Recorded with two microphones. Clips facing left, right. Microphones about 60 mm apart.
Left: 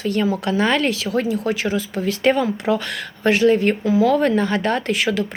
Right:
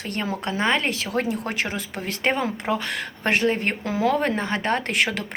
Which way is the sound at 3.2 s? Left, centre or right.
Right.